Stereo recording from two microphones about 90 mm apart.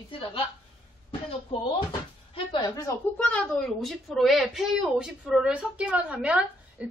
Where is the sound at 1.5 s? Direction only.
90° left.